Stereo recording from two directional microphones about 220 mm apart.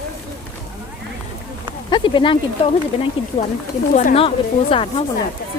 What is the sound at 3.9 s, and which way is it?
Speech, 35° left (ahead or behind).